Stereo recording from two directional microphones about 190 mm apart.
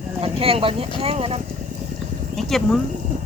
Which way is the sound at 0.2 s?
30° right (ahead or behind).